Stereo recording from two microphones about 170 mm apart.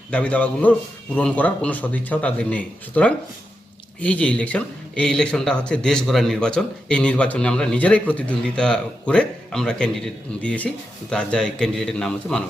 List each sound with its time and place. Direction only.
0.1 s speech: 5° left (ahead or behind)